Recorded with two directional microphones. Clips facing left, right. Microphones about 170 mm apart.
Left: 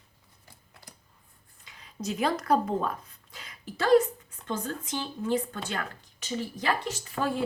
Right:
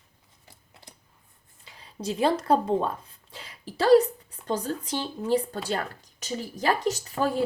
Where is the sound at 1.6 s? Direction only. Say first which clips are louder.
Right 1 dB; 30° right (ahead or behind).